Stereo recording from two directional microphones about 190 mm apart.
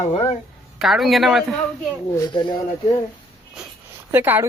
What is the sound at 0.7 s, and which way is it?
Speech, centre (ahead or behind).